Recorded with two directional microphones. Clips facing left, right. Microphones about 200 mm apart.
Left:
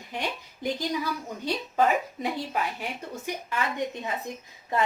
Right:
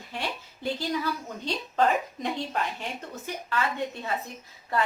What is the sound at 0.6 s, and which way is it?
A woman's voice, 10° left (ahead or behind).